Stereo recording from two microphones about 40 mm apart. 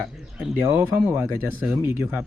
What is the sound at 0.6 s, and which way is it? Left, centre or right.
Speech, right.